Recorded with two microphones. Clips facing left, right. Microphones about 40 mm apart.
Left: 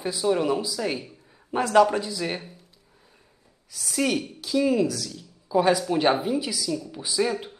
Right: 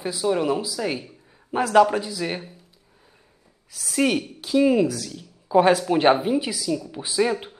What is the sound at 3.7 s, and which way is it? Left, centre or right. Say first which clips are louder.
Speech: right 3 dB; centre.